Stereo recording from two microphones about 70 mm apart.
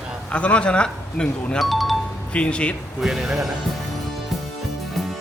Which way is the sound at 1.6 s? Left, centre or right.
Centre.